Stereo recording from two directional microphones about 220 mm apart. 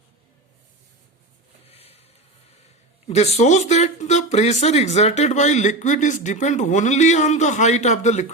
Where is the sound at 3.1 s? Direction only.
30° left (ahead or behind).